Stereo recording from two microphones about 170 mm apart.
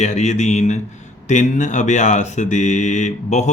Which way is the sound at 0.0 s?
45° left (ahead or behind).